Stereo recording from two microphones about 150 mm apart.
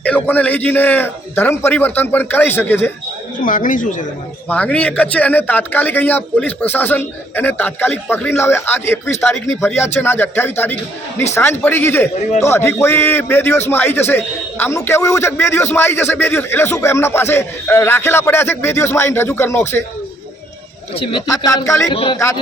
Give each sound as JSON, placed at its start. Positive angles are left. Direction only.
{"t": 0.0, "sound": "a man's voice", "side_deg": 10}
{"t": 3.4, "sound": "speech", "side_deg": 65}
{"t": 4.4, "sound": "a man's voice", "side_deg": 10}
{"t": 20.9, "sound": "speech", "side_deg": 35}
{"t": 21.2, "sound": "speech", "side_deg": 25}
{"t": 21.9, "sound": "speech", "side_deg": 40}